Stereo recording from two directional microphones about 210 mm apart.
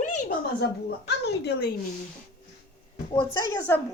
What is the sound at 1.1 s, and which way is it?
Speech, 50° left (ahead or behind).